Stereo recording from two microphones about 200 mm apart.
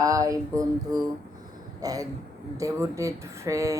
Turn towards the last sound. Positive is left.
turn(degrees=-15)  # may be behind; listen again after turning